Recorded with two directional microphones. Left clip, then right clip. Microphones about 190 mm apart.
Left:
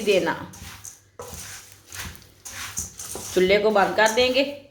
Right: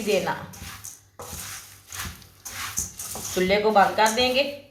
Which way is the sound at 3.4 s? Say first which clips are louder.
Even; 55° left (ahead or behind).